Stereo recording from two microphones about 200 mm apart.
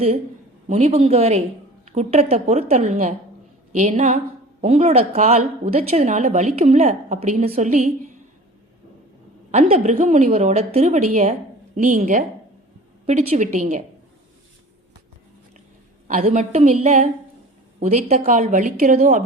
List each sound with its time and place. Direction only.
0.7 s a woman's voice: 35° right (ahead or behind)
9.5 s a woman's voice: 35° right (ahead or behind)
16.0 s a woman's voice: 40° right (ahead or behind)